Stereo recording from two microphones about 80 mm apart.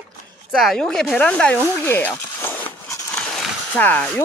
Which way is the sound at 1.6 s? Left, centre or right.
Left.